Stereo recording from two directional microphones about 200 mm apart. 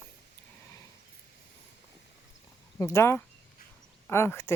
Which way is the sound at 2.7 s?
15° left (ahead or behind).